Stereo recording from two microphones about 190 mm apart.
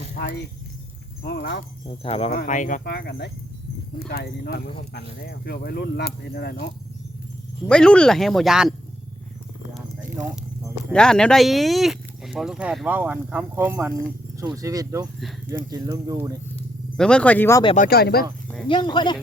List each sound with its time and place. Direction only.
1.2 s speech: 60° left (ahead or behind)
1.9 s speech: 30° left (ahead or behind)
2.3 s speech: 50° left (ahead or behind)
2.8 s speech: 55° left (ahead or behind)
7.7 s speech: 5° left (ahead or behind)
10.9 s speech: 5° left (ahead or behind); by 16.4 s 15° right (ahead or behind)
17.0 s speech: 5° left (ahead or behind)
17.7 s speech: 55° left (ahead or behind)
18.7 s speech: 25° left (ahead or behind)